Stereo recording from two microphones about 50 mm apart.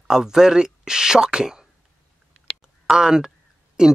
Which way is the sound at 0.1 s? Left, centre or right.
Centre.